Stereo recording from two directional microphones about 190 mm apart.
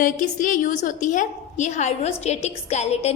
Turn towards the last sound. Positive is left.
turn(degrees=35)  # may be behind; listen again after turning